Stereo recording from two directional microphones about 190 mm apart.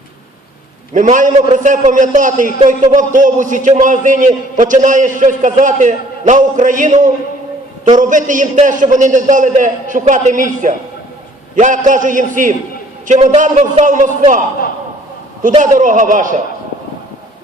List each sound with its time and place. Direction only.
0.9 s a man's voice: 40° right (ahead or behind)